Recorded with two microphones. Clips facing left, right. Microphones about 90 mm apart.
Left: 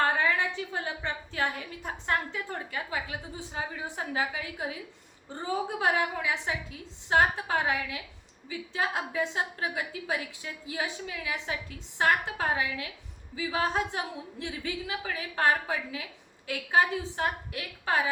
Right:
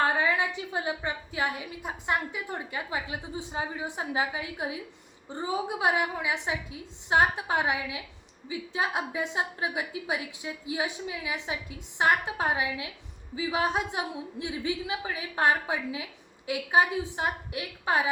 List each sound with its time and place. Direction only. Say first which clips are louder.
0.0 s a woman's voice: right 1 dB; 15° right (ahead or behind)